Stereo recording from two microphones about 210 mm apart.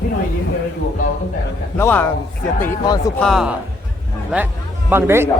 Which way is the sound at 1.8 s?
10° left (ahead or behind).